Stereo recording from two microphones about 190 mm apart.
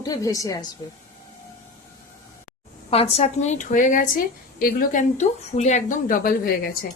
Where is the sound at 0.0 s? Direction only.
20° left (ahead or behind).